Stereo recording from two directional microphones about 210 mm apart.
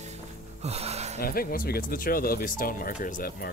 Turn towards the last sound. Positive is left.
turn(degrees=45)  # may be behind; listen again after turning